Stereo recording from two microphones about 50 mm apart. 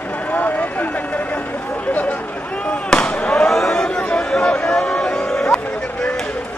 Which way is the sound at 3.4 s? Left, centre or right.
Centre.